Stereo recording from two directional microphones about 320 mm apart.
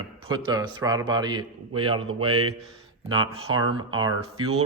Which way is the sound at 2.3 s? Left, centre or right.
Right.